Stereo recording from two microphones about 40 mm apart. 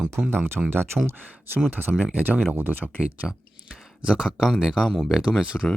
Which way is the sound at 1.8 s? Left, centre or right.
Right.